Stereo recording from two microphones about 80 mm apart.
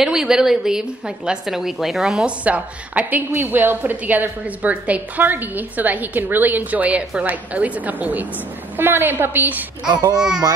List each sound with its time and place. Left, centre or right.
0.0 s a woman's voice: centre
2.2 s a woman's voice: centre
10.1 s speech: centre